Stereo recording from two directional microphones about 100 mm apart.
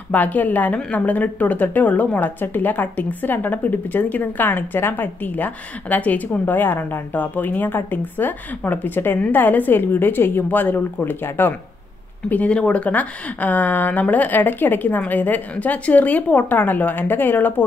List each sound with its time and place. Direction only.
0.1 s a woman's voice: 15° left (ahead or behind)